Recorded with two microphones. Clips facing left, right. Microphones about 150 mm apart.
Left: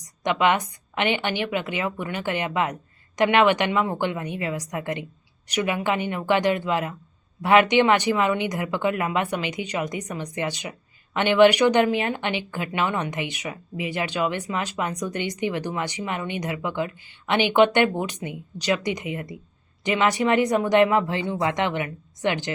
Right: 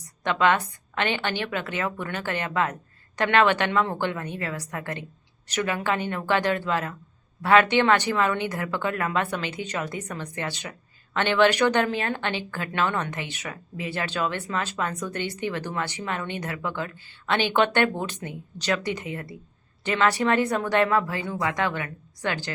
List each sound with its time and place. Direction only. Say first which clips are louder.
0.0 s speech: left 1 dB; 15° left (ahead or behind)